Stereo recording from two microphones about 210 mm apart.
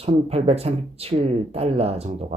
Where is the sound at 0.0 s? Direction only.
30° right (ahead or behind).